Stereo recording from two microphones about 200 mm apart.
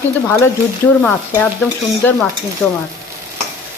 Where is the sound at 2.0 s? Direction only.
10° left (ahead or behind).